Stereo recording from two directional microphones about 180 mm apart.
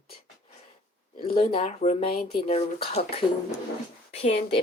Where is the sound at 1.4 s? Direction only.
35° left (ahead or behind).